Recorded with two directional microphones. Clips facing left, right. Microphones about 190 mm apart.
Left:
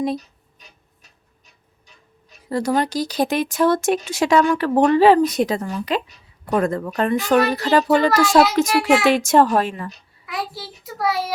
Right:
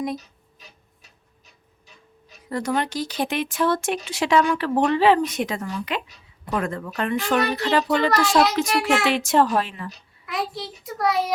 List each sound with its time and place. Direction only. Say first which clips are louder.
2.5 s speech: left 4 dB; 35° left (ahead or behind)
8.7 s a child's voice: left 4 dB; centre (ahead or behind)
9.0 s a woman's voice: left 4 dB; 45° left (ahead or behind)
10.2 s a child's voice: right 1 dB; centre (ahead or behind)